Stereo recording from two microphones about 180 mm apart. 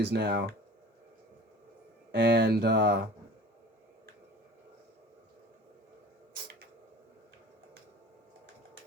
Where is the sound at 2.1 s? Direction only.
70° right (ahead or behind).